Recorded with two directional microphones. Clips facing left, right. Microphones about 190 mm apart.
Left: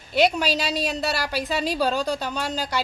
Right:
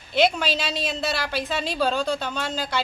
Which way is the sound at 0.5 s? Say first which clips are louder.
Left 2 dB; 40° left (ahead or behind).